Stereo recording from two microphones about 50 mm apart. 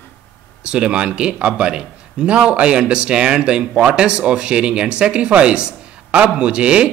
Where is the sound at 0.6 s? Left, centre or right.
Centre.